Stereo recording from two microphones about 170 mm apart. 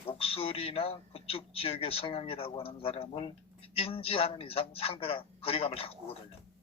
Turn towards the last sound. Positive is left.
turn(degrees=35)  # may be behind; listen again after turning